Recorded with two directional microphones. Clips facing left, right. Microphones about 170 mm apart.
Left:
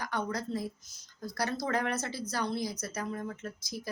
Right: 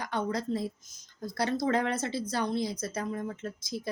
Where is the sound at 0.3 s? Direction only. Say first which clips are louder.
Right 3 dB; 25° right (ahead or behind).